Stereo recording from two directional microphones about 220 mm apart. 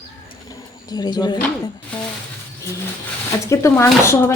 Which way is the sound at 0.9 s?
20° left (ahead or behind).